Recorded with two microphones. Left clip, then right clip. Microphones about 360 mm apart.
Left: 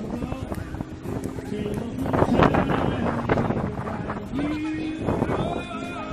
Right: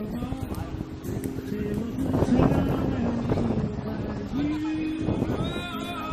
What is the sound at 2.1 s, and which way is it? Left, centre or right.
Wind noise, left.